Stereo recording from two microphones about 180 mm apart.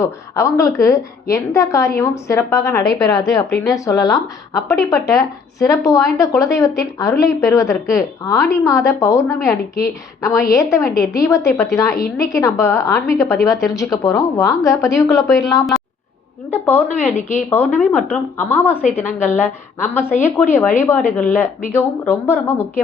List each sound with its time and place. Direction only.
0.0 s a woman's voice: 15° left (ahead or behind)
16.5 s a woman's voice: 10° left (ahead or behind)